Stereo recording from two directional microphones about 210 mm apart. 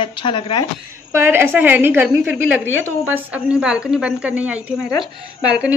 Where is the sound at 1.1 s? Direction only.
10° right (ahead or behind).